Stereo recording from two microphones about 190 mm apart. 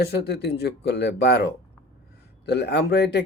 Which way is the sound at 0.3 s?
60° left (ahead or behind).